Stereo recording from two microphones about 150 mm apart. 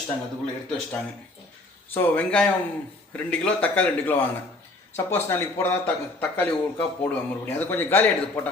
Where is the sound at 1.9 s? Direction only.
10° left (ahead or behind).